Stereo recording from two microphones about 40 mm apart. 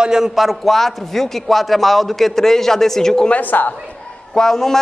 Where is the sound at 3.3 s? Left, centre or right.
Left.